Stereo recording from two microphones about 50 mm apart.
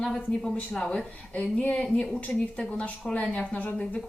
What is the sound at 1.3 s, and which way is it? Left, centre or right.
Speech, left.